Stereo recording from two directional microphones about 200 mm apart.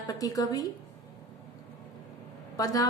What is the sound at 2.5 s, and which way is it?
Speech, 20° left (ahead or behind).